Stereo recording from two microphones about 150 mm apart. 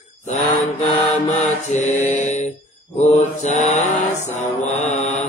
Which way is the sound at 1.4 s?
50° left (ahead or behind).